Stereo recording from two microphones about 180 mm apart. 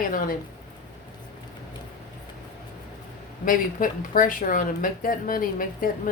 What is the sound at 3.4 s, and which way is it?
Speech, 50° left (ahead or behind).